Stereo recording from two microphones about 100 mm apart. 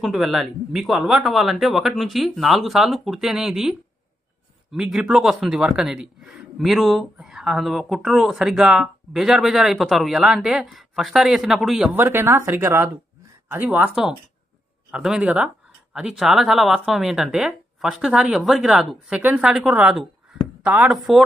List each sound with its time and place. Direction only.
0.0 s speech: centre (ahead or behind)
11.9 s a woman's voice: 25° right (ahead or behind); by 21.2 s centre (ahead or behind)